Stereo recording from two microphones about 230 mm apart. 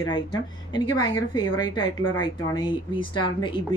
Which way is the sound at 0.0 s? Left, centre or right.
Centre.